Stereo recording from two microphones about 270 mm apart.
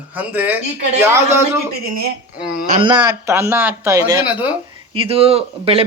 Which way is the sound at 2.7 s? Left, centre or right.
Centre.